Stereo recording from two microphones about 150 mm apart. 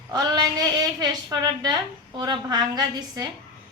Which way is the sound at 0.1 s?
25° right (ahead or behind).